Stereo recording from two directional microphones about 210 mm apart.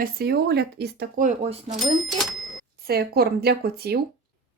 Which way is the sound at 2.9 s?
45° right (ahead or behind).